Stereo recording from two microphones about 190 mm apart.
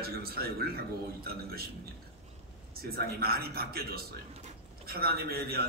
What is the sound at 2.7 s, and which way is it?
A man's voice, 55° right (ahead or behind).